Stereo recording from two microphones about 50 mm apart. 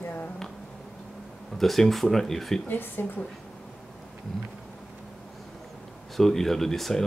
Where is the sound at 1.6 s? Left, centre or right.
Centre.